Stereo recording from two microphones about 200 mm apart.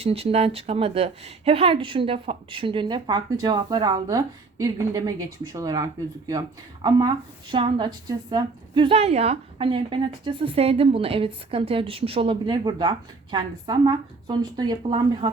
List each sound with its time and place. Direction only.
0.0 s a woman's voice: 30° right (ahead or behind)
7.5 s a woman's voice: 25° right (ahead or behind)